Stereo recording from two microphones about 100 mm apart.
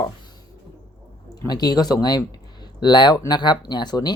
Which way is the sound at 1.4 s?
45° left (ahead or behind).